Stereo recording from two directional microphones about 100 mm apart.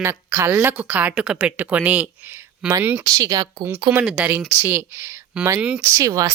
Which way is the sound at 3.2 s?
40° right (ahead or behind).